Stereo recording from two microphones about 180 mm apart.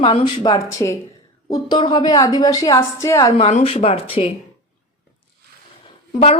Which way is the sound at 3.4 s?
35° left (ahead or behind).